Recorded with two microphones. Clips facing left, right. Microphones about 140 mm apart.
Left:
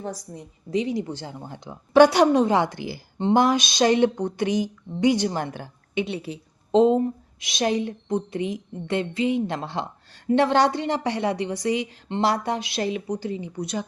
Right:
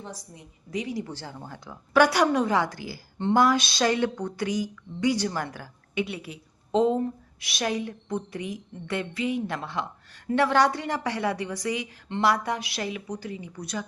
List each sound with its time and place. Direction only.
0.0 s a woman's voice: 40° left (ahead or behind)
0.7 s a woman's voice: 25° left (ahead or behind)